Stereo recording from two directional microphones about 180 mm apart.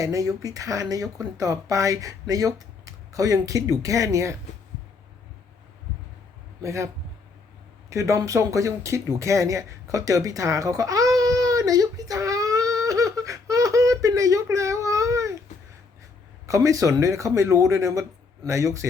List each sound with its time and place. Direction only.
0.0 s speech: 20° right (ahead or behind)
6.6 s a man's voice: 15° right (ahead or behind)
7.9 s a sound: 15° right (ahead or behind)
16.5 s speech: 20° right (ahead or behind)